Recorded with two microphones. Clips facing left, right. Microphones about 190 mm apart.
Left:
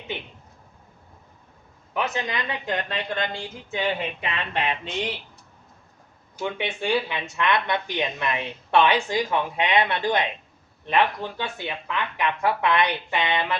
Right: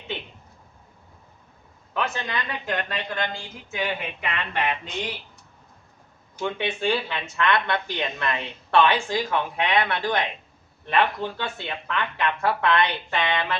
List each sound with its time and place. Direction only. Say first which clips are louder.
1.9 s speech: left 1 dB; 15° left (ahead or behind)
6.4 s speech: right 2 dB; 15° left (ahead or behind)